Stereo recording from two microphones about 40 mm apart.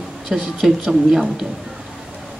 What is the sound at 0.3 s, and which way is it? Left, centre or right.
Speech, centre.